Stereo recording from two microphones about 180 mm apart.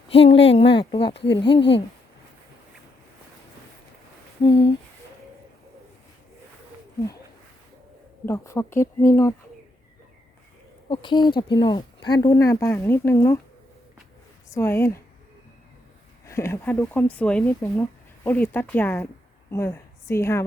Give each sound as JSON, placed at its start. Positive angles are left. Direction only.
{"t": 0.1, "sound": "speech", "side_deg": 30}
{"t": 4.4, "sound": "speech", "side_deg": 30}
{"t": 8.3, "sound": "speech", "side_deg": 15}
{"t": 10.8, "sound": "speech", "side_deg": 25}
{"t": 14.5, "sound": "speech", "side_deg": 15}
{"t": 16.2, "sound": "a woman's voice", "side_deg": 15}